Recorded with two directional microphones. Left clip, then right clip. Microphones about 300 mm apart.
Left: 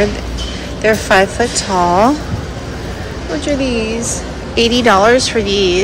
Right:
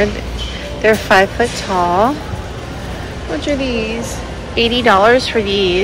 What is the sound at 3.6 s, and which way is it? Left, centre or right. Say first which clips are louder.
Speech: left 2 dB; centre.